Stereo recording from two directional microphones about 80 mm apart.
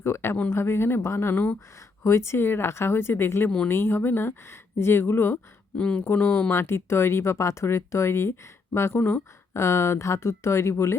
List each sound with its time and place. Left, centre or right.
0.0 s speech: left
5.7 s speech: centre
6.1 s speech: left